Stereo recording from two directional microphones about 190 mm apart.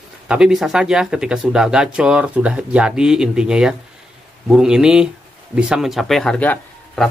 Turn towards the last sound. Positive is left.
turn(degrees=5)  # may be behind; listen again after turning